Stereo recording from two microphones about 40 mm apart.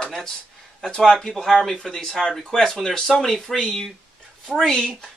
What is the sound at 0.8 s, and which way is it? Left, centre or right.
Speech, centre.